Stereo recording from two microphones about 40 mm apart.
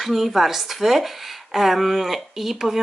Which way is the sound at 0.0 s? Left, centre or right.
Centre.